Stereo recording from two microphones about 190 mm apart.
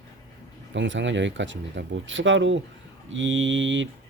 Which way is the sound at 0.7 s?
75° right (ahead or behind).